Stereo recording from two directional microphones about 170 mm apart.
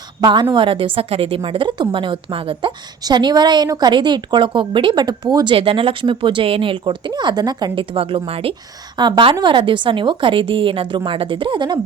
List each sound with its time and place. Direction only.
0.2 s a woman's voice: 25° right (ahead or behind)